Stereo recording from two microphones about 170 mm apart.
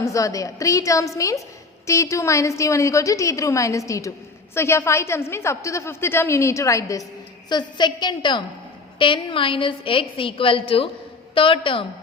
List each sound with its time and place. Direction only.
0.0 s a woman's voice: 20° left (ahead or behind)